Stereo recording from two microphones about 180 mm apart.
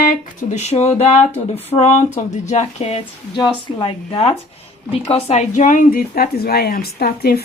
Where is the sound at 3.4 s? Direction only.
25° left (ahead or behind).